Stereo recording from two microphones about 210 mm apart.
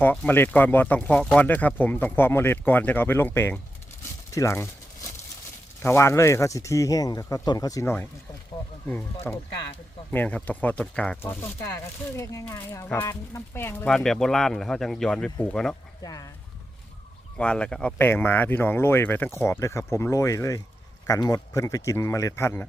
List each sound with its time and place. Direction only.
0.0 s speech: 5° left (ahead or behind)
5.8 s speech: 10° left (ahead or behind)
9.3 s speech: 10° left (ahead or behind)
12.1 s speech: 15° left (ahead or behind)
16.0 s speech: 15° left (ahead or behind)
17.3 s speech: 5° left (ahead or behind)